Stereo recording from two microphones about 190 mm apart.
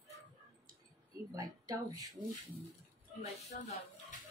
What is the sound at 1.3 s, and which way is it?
Speech, 20° right (ahead or behind).